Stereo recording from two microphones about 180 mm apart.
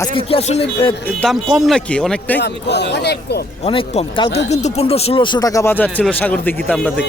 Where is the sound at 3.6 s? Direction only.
30° left (ahead or behind); by 7.1 s 5° left (ahead or behind).